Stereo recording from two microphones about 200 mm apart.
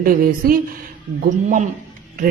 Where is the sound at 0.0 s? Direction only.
45° right (ahead or behind).